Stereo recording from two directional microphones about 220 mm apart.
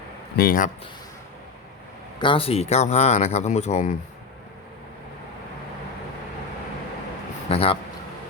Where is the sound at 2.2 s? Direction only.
25° left (ahead or behind).